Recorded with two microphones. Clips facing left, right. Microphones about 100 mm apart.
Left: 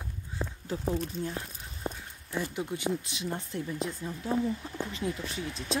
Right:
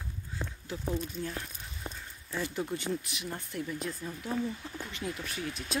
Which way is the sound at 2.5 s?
15° left (ahead or behind).